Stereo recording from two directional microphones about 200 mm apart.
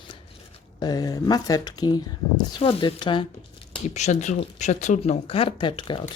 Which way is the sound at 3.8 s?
35° left (ahead or behind).